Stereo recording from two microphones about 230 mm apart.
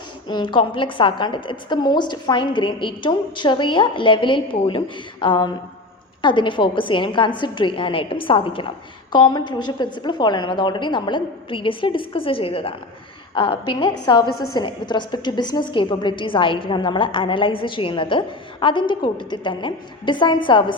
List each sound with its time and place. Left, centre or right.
0.3 s a woman's voice: centre
14.3 s a woman's voice: left
14.5 s a woman's voice: centre